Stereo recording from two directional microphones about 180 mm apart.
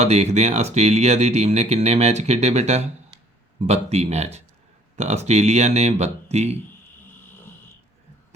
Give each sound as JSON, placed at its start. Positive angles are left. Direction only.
{"t": 0.0, "sound": "speech", "side_deg": -40}